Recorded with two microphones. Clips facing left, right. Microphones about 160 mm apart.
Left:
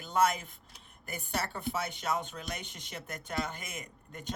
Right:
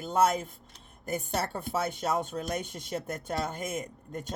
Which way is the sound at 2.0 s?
30° right (ahead or behind).